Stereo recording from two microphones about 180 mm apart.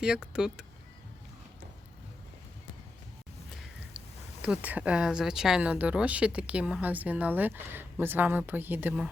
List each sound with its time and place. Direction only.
0.0 s speech: 5° right (ahead or behind)
4.4 s speech: 10° right (ahead or behind)